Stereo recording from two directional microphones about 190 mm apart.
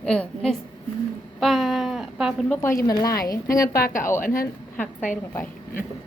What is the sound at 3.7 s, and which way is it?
Speech, 50° left (ahead or behind).